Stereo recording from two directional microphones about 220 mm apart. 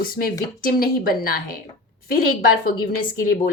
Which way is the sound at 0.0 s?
40° left (ahead or behind).